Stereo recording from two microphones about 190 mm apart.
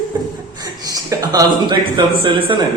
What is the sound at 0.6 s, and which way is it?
A man's voice, 20° right (ahead or behind).